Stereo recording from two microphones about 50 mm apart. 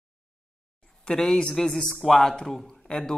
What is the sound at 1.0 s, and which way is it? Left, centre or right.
A man's voice, centre.